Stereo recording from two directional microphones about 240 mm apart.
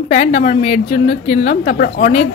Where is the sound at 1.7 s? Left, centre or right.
Left.